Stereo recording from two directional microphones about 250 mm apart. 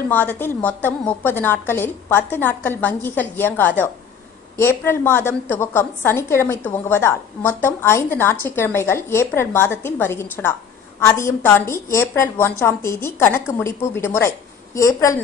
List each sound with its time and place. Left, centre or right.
0.1 s a woman's voice: centre